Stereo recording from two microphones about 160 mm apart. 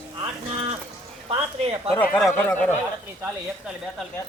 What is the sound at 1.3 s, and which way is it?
Speech, 35° right (ahead or behind).